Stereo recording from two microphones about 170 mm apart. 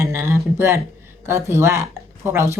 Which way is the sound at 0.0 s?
15° right (ahead or behind).